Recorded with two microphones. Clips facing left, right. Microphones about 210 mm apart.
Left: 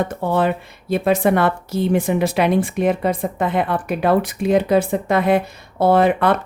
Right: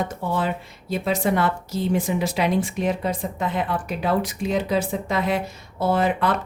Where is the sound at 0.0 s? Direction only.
60° left (ahead or behind).